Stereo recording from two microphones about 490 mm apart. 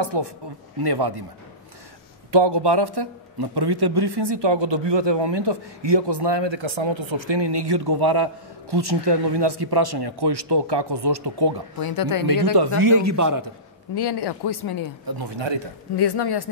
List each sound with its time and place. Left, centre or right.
0.0 s speech: right
2.3 s speech: right
11.8 s speech: left
12.5 s a man's voice: right
13.9 s speech: left
15.0 s speech: right
16.0 s speech: left